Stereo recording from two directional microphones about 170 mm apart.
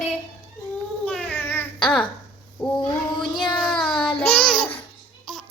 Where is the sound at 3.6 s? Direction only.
5° left (ahead or behind).